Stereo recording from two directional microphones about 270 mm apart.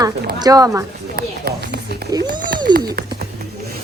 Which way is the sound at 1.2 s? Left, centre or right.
Right.